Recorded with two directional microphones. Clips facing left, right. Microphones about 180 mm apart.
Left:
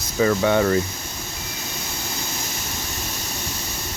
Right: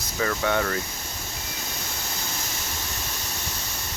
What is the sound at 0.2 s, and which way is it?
Speech, 20° left (ahead or behind).